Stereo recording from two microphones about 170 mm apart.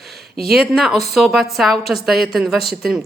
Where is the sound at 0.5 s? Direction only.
Centre (ahead or behind).